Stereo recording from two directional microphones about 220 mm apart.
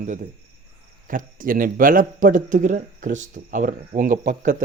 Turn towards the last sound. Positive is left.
turn(degrees=-35)  # may be behind; listen again after turning